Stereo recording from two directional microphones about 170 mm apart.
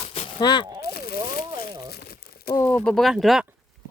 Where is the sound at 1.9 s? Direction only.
65° left (ahead or behind).